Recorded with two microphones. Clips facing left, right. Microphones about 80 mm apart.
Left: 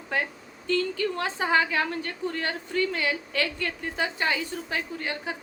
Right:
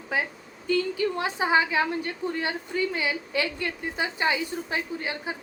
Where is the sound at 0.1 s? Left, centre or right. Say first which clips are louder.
Even; centre.